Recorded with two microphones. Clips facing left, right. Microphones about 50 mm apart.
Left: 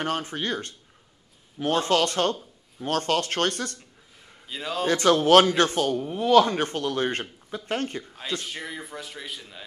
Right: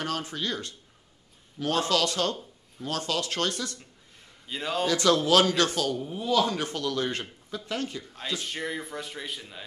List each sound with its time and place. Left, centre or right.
0.0 s speech: left
4.5 s speech: centre
4.8 s speech: left
5.9 s speech: left
6.4 s speech: left
8.4 s speech: centre